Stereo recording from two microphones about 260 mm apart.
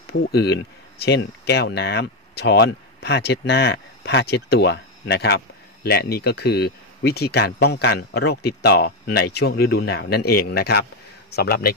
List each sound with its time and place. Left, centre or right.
0.0 s speech: left